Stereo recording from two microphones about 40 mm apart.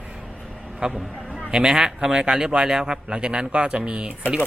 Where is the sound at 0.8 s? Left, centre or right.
Right.